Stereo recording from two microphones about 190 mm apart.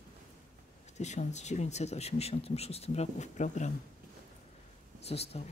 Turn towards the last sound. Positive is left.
turn(degrees=30)  # may be behind; listen again after turning